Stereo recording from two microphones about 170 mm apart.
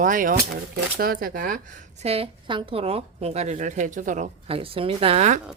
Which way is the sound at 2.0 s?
35° right (ahead or behind).